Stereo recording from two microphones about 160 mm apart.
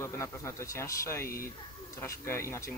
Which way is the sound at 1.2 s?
65° left (ahead or behind).